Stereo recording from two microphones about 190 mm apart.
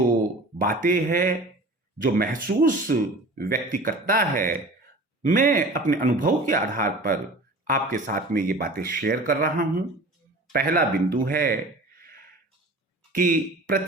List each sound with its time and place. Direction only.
0.6 s speech: 50° right (ahead or behind)
13.1 s a man's voice: 45° right (ahead or behind)